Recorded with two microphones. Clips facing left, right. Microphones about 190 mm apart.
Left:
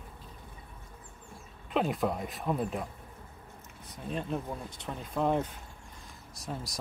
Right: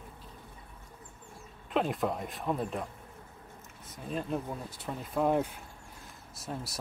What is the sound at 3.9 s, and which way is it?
Speech, centre (ahead or behind).